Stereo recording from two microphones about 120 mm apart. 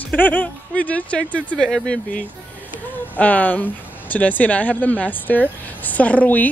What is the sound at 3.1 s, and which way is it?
Speech, 10° left (ahead or behind).